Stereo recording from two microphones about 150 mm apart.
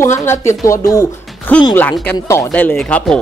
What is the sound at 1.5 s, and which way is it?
Speech, 10° left (ahead or behind).